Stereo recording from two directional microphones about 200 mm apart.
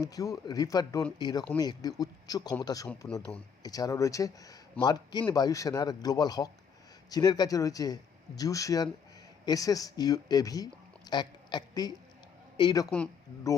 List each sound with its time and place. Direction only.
0.0 s speech: 15° left (ahead or behind)
3.1 s a man's voice: 5° left (ahead or behind)
3.6 s speech: 20° left (ahead or behind)